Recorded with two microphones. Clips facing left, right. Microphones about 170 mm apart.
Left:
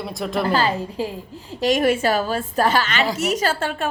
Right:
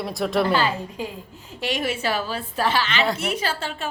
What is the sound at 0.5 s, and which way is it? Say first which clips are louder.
A woman's voice: left 3 dB; 35° left (ahead or behind).